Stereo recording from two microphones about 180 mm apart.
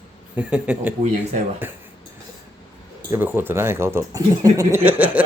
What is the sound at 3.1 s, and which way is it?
Speech, 10° right (ahead or behind).